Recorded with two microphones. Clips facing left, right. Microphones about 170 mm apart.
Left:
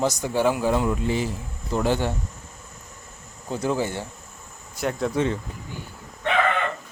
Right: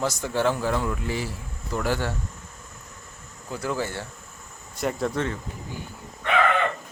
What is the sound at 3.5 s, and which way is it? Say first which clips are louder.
Speech: left 4 dB; 20° left (ahead or behind).